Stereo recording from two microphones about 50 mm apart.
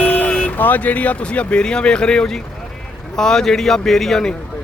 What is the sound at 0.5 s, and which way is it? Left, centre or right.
Speech, left.